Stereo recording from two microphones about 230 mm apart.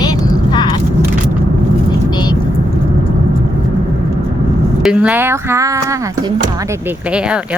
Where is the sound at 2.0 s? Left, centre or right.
Centre.